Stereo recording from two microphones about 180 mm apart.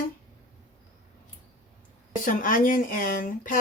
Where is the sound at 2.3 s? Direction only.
50° left (ahead or behind).